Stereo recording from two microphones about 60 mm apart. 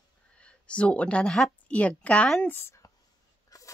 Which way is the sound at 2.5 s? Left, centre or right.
Left.